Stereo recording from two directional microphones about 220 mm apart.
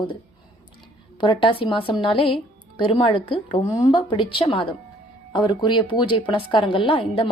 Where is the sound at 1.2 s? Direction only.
20° left (ahead or behind).